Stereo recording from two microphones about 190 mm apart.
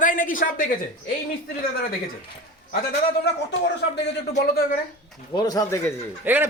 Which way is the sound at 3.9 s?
60° left (ahead or behind).